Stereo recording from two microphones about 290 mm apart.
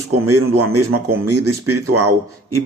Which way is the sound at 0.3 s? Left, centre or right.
Right.